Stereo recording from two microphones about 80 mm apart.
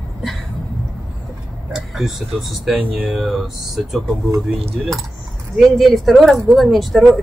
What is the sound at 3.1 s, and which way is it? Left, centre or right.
A woman's voice, centre.